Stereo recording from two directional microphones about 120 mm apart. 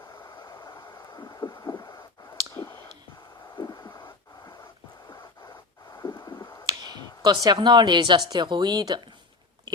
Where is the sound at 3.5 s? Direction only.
30° left (ahead or behind).